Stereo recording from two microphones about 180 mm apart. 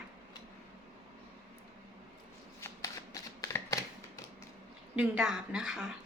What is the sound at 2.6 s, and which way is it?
Shuffling cards, 15° left (ahead or behind).